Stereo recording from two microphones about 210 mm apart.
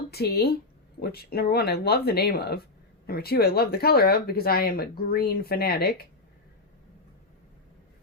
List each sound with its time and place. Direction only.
0.1 s speech: 50° left (ahead or behind)